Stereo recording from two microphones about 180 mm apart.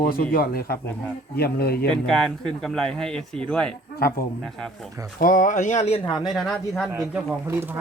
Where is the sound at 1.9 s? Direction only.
5° left (ahead or behind).